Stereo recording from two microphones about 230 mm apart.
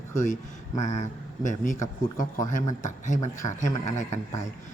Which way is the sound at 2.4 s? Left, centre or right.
Left.